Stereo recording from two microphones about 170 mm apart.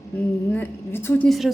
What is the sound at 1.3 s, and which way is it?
Speech, centre (ahead or behind).